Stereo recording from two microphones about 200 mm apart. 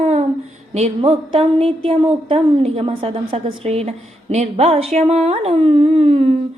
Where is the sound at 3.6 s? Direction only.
30° right (ahead or behind).